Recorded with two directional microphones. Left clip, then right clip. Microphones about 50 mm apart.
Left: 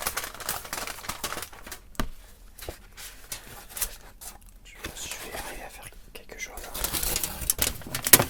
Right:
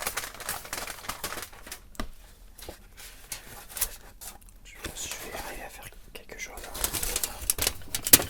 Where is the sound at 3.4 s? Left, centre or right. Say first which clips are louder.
Left 1 dB; centre.